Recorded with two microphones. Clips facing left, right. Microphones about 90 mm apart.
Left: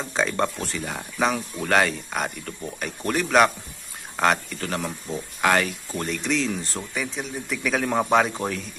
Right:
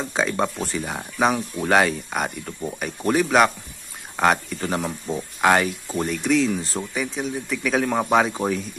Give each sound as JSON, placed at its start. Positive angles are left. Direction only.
{"t": 0.0, "sound": "speech", "side_deg": -5}
{"t": 4.6, "sound": "speech", "side_deg": -15}